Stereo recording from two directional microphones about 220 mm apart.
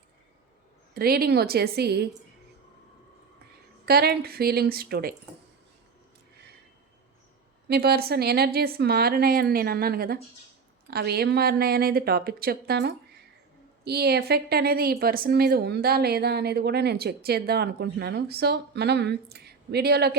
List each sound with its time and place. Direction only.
0.9 s a woman's voice: 45° right (ahead or behind)
3.8 s a woman's voice: 45° right (ahead or behind)
7.7 s a woman's voice: 45° right (ahead or behind)